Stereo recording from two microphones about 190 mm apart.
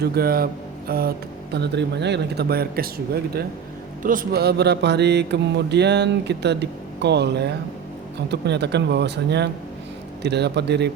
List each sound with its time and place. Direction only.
0.0 s speech: 55° right (ahead or behind)
1.5 s speech: 65° right (ahead or behind)
4.0 s speech: 45° right (ahead or behind)